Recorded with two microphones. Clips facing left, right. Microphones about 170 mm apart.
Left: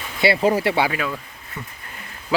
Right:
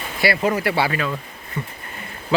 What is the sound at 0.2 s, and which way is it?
Speech, 25° left (ahead or behind).